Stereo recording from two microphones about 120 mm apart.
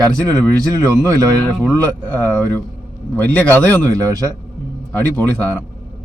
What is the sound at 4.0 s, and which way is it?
Speech, 30° right (ahead or behind).